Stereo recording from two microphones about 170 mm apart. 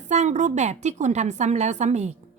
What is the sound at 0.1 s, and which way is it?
A woman's voice, 40° right (ahead or behind).